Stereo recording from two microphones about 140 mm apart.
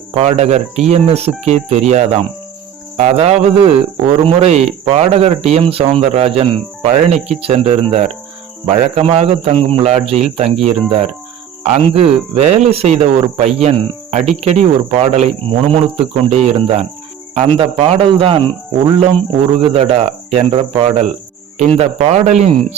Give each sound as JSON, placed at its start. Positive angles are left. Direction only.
{"t": 0.2, "sound": "a man's voice", "side_deg": -50}
{"t": 19.7, "sound": "speech", "side_deg": -45}